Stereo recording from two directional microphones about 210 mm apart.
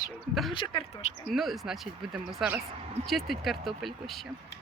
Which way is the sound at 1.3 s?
Centre (ahead or behind).